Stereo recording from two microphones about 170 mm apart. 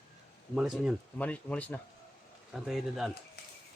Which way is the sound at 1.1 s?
10° left (ahead or behind).